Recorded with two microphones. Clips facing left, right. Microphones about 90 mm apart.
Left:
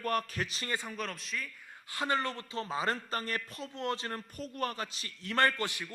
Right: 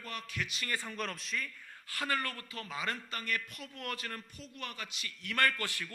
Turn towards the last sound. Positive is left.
turn(degrees=20)  # may be behind; listen again after turning